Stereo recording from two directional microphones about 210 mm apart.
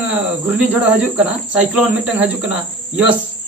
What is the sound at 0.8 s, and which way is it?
Speech, 5° right (ahead or behind).